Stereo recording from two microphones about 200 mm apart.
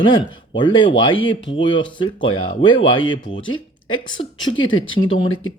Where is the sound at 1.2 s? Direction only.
70° left (ahead or behind).